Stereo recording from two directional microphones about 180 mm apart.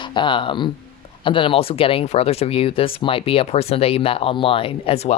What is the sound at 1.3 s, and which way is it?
Speech, 30° left (ahead or behind).